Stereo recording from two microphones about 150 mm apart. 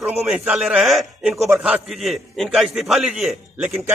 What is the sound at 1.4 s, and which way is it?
A man's voice, 15° right (ahead or behind).